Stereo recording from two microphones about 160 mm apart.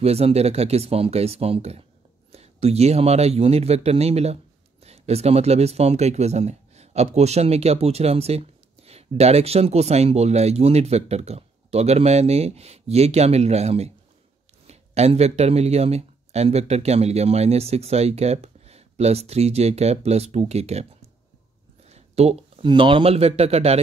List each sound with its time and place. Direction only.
0.0 s speech: 40° right (ahead or behind)
21.8 s speech: 40° right (ahead or behind)